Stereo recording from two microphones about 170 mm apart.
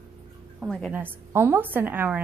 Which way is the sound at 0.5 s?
5° right (ahead or behind).